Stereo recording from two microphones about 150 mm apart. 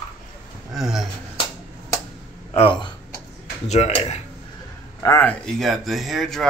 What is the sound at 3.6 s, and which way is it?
Speech, 50° left (ahead or behind).